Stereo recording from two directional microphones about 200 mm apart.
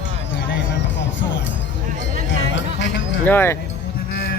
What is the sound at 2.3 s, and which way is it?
Chatter, 65° left (ahead or behind).